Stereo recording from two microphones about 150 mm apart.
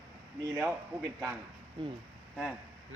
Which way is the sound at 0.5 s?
15° right (ahead or behind).